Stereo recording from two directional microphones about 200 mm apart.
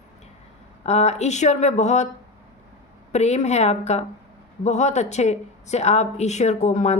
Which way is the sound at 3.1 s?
35° left (ahead or behind).